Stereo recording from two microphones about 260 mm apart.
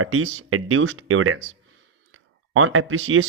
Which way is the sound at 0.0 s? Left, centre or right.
Right.